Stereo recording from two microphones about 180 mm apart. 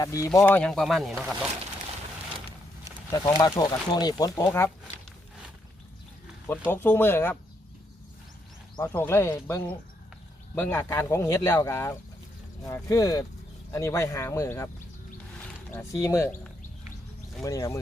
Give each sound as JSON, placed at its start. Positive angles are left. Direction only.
{"t": 0.0, "sound": "speech", "side_deg": 20}
{"t": 0.3, "sound": "speech", "side_deg": 5}
{"t": 3.3, "sound": "speech", "side_deg": 25}
{"t": 6.7, "sound": "speech", "side_deg": 10}
{"t": 8.7, "sound": "speech", "side_deg": 15}
{"t": 16.0, "sound": "speech", "side_deg": 15}
{"t": 17.4, "sound": "speech", "side_deg": 20}